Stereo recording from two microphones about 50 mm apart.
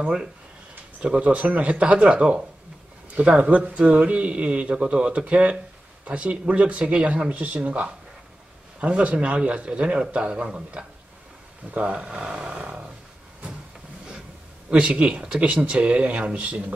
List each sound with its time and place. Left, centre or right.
0.0 s speech: centre
14.7 s speech: right